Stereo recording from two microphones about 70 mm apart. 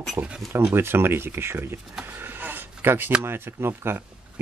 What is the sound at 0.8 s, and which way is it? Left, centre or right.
Speech, right.